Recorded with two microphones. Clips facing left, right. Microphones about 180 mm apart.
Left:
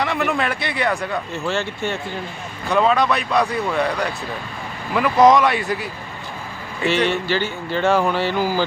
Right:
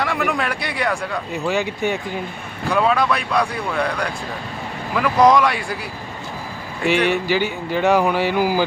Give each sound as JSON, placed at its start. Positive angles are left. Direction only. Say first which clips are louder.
{"t": 0.0, "sound": "speech", "louder": "left 1 dB", "side_deg": 0}
{"t": 1.3, "sound": "speech", "louder": "right 2 dB", "side_deg": -15}
{"t": 2.6, "sound": "speech", "louder": "left 1 dB", "side_deg": 0}
{"t": 6.8, "sound": "speech", "louder": "right 1 dB", "side_deg": -15}